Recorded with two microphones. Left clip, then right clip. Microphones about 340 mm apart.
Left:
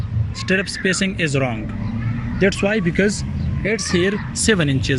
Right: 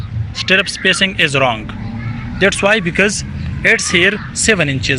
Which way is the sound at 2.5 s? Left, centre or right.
Right.